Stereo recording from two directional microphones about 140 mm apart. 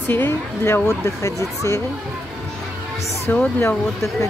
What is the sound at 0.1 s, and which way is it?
A woman's voice, 15° left (ahead or behind).